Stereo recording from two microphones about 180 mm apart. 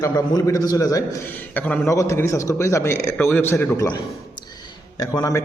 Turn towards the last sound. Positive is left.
turn(degrees=20)  # may be behind; listen again after turning